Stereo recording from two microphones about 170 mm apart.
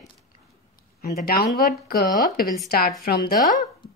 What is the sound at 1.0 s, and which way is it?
Speech, 65° left (ahead or behind).